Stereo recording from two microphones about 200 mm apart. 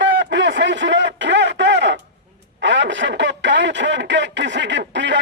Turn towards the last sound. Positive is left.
turn(degrees=-65)  # may be behind; listen again after turning